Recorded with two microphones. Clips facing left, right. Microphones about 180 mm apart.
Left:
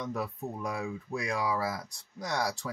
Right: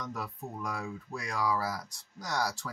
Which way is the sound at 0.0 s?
20° left (ahead or behind).